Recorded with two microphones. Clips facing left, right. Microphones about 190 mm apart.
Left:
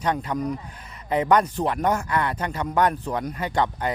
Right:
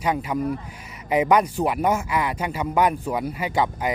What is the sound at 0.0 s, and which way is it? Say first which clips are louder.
Speech: right 1 dB; 10° right (ahead or behind).